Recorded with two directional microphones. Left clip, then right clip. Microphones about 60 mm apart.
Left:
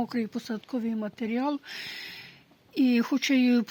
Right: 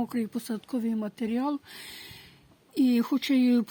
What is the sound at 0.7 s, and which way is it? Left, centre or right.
Speech, right.